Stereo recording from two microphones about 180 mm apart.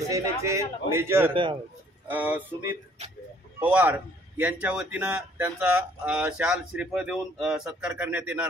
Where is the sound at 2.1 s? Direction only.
10° right (ahead or behind).